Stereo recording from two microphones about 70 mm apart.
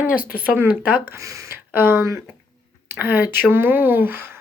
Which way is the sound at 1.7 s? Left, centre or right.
Right.